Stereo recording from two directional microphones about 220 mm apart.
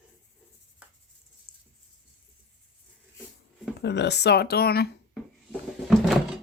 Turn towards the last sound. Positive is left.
turn(degrees=0)  # may be behind; listen again after turning